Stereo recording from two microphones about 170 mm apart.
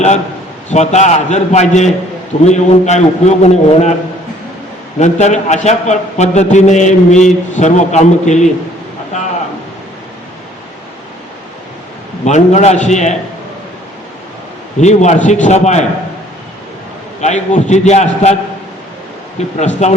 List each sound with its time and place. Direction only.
0.7 s a man's voice: 40° left (ahead or behind)
4.9 s a man's voice: 45° left (ahead or behind)
12.2 s a man's voice: 45° left (ahead or behind)
14.8 s a man's voice: 45° left (ahead or behind)
17.2 s a man's voice: 45° left (ahead or behind)
19.5 s a man's voice: 45° left (ahead or behind)